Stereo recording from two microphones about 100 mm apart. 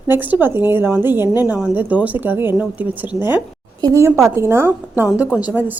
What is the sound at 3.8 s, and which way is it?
A woman's voice, 30° right (ahead or behind).